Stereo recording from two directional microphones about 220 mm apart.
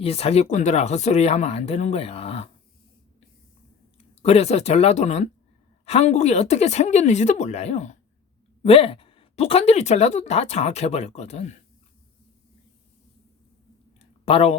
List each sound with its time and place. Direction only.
0.0 s speech: 25° left (ahead or behind)
4.2 s speech: 30° left (ahead or behind)
14.0 s a sound: 25° left (ahead or behind)